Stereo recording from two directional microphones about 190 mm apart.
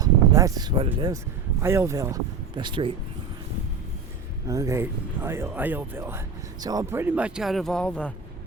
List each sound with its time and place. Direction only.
0.0 s a sound: 20° right (ahead or behind)
0.9 s speech: 20° right (ahead or behind)
4.4 s speech: 15° right (ahead or behind); by 8.1 s 5° left (ahead or behind)